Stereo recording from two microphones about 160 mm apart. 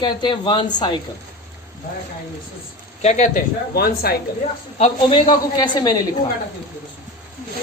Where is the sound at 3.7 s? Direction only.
70° left (ahead or behind).